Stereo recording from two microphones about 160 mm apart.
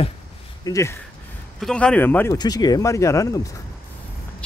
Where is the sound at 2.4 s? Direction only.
25° left (ahead or behind).